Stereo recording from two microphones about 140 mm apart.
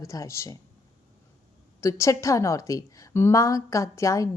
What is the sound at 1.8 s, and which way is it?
A woman's voice, 20° left (ahead or behind).